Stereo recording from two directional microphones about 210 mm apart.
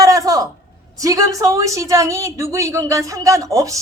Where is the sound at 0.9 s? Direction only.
15° right (ahead or behind).